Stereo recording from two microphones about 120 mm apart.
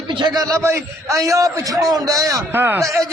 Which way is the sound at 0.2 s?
35° right (ahead or behind).